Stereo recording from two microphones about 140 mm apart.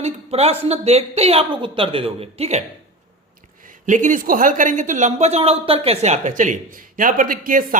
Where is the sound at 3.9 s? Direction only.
65° right (ahead or behind).